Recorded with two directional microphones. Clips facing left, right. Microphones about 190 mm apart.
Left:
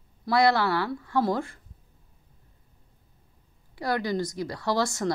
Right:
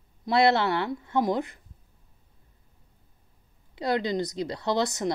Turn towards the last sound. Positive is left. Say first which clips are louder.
# even
turn(degrees=-20)  # may be behind; listen again after turning